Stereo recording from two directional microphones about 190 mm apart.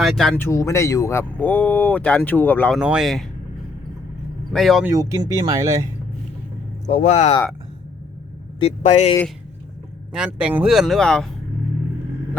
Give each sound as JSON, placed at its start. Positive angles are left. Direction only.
{"t": 0.0, "sound": "speech", "side_deg": 0}
{"t": 0.4, "sound": "speech", "side_deg": 15}
{"t": 2.7, "sound": "speech", "side_deg": -5}
{"t": 4.5, "sound": "speech", "side_deg": 0}
{"t": 4.9, "sound": "speech", "side_deg": -20}
{"t": 6.8, "sound": "speech", "side_deg": 40}
{"t": 8.5, "sound": "speech", "side_deg": 30}
{"t": 10.1, "sound": "speech", "side_deg": -5}